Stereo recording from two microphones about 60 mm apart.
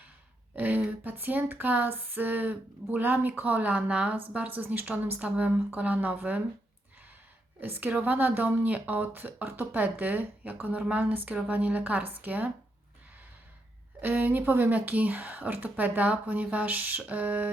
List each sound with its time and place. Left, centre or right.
0.5 s a sound: right
0.9 s speech: right
7.6 s speech: right
14.0 s speech: right